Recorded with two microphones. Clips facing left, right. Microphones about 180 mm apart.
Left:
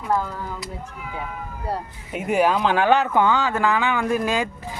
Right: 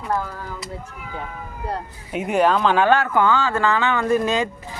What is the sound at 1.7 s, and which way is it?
Speech, 5° left (ahead or behind).